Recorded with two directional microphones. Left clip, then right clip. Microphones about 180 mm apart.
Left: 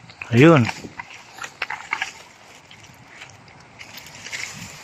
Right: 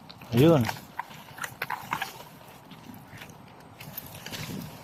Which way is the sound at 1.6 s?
35° right (ahead or behind).